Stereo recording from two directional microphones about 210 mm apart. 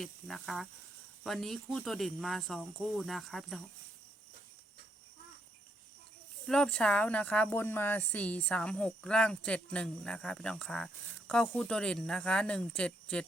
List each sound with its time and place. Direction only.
0.0 s speech: centre (ahead or behind)
6.5 s speech: 5° left (ahead or behind)